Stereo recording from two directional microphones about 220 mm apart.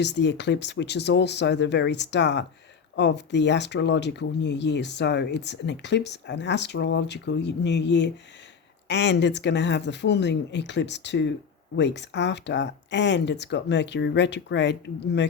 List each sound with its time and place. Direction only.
0.0 s speech: 50° left (ahead or behind)